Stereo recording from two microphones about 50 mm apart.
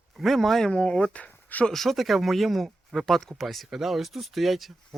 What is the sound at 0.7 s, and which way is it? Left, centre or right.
Speech, left.